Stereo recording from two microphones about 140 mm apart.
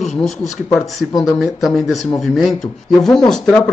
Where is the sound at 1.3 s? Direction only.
Centre (ahead or behind).